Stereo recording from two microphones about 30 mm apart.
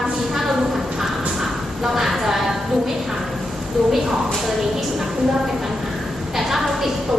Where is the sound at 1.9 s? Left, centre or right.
Centre.